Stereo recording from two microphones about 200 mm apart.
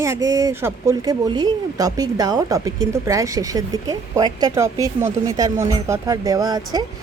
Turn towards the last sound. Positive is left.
turn(degrees=-20)  # may be behind; listen again after turning